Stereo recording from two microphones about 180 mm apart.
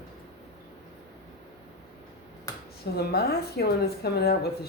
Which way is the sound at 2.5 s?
20° left (ahead or behind).